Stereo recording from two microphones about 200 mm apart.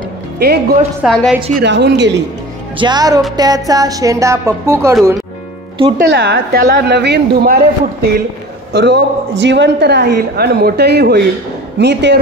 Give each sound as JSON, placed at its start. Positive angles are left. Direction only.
{"t": 0.4, "sound": "a woman's voice", "side_deg": -55}
{"t": 1.0, "sound": "a woman's voice", "side_deg": 0}
{"t": 1.6, "sound": "a woman's voice", "side_deg": -60}
{"t": 2.8, "sound": "speech", "side_deg": -20}
{"t": 5.9, "sound": "a woman's voice", "side_deg": -55}